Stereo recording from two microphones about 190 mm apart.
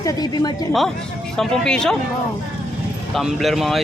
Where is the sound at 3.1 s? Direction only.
Centre (ahead or behind).